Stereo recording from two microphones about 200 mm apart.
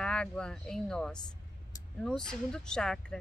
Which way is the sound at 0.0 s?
5° left (ahead or behind).